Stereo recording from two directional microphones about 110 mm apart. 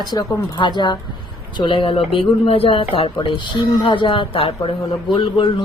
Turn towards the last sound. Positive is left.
turn(degrees=50)  # may be behind; listen again after turning